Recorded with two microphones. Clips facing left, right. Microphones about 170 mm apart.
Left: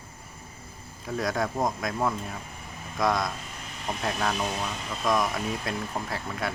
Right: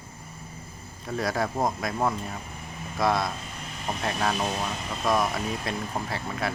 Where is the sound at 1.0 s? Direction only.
Centre (ahead or behind).